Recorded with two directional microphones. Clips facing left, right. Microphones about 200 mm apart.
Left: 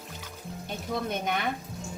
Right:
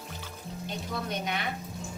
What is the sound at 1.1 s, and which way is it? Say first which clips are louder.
Speech: left 2 dB; 50° left (ahead or behind).